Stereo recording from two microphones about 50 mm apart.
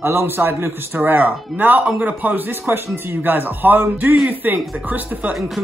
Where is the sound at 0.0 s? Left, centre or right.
Right.